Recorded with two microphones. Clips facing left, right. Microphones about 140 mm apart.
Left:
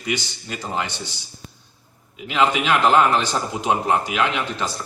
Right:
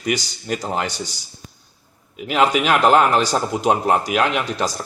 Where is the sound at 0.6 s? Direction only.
40° right (ahead or behind).